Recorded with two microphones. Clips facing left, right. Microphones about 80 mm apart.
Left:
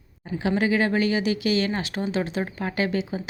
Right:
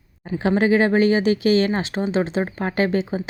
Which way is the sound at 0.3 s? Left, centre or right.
Right.